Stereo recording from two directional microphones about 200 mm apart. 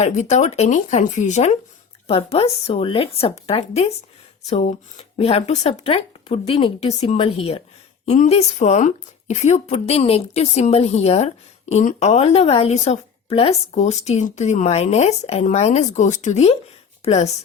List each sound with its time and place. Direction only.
0.0 s speech: 35° left (ahead or behind)